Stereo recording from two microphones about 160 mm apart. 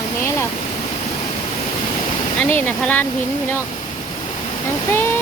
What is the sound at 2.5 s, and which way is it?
Speech, 10° left (ahead or behind).